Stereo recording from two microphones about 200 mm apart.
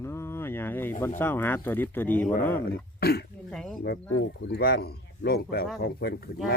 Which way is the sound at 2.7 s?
50° left (ahead or behind).